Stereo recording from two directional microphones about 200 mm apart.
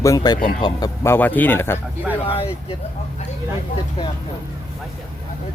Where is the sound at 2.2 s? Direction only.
30° left (ahead or behind).